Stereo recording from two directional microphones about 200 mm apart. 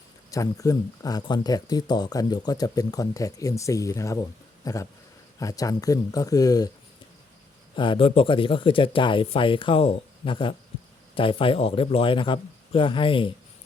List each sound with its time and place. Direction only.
0.3 s speech: 15° left (ahead or behind)
7.8 s speech: 25° left (ahead or behind)